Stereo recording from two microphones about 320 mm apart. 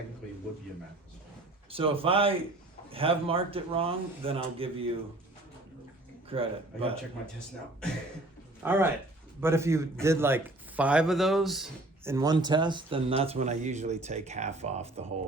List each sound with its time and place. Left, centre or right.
1.7 s a man's voice: centre
6.2 s a man's voice: centre
8.6 s a man's voice: centre